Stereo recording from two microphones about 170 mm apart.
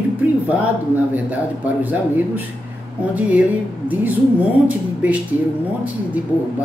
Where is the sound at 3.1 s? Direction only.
10° right (ahead or behind).